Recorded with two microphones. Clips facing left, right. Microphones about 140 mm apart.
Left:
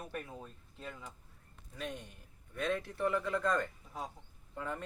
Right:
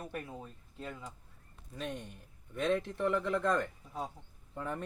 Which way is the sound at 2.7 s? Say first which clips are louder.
Right 2 dB; 20° right (ahead or behind).